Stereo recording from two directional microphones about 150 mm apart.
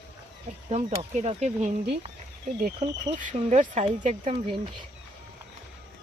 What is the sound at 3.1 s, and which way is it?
Speech, 55° right (ahead or behind).